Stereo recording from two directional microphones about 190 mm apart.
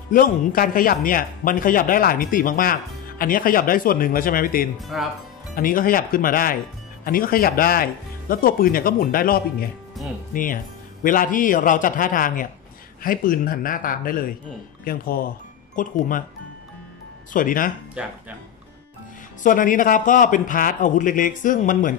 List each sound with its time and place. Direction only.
0.1 s speech: 45° left (ahead or behind)
4.7 s speech: centre (ahead or behind)
5.5 s speech: 45° left (ahead or behind)
17.3 s speech: 45° left (ahead or behind)
18.0 s speech: 5° right (ahead or behind)
19.4 s speech: 45° left (ahead or behind)